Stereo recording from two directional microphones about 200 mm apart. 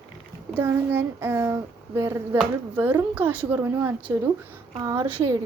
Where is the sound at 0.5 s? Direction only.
10° right (ahead or behind).